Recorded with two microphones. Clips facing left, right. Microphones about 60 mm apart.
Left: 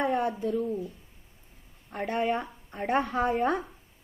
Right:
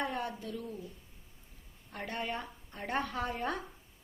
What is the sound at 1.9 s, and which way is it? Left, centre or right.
Speech, left.